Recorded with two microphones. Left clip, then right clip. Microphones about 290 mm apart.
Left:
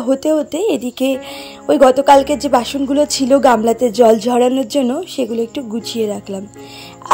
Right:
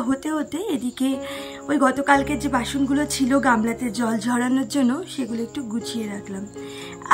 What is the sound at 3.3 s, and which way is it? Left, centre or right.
Speech, left.